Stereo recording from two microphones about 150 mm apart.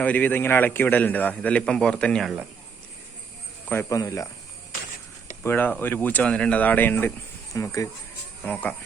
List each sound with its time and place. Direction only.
0.0 s a man's voice: 10° left (ahead or behind)
3.7 s speech: 20° left (ahead or behind)
5.4 s a man's voice: 15° left (ahead or behind)